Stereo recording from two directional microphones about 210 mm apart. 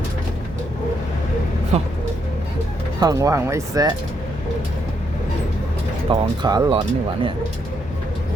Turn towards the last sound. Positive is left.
turn(degrees=-25)  # may be behind; listen again after turning